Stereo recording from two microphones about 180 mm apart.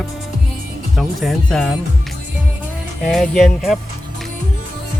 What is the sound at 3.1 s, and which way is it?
Speech, centre (ahead or behind).